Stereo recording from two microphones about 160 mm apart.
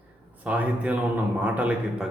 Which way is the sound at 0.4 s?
10° right (ahead or behind).